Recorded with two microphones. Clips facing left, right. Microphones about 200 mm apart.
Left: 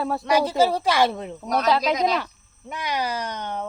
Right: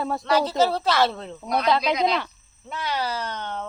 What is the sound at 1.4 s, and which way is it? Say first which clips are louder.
Speech: left 1 dB; 40° left (ahead or behind).